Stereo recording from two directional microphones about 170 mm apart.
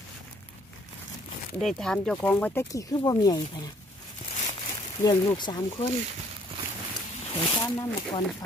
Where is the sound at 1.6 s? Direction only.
5° left (ahead or behind); by 3.6 s 25° left (ahead or behind).